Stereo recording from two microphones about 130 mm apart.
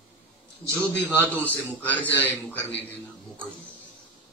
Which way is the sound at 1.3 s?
15° left (ahead or behind).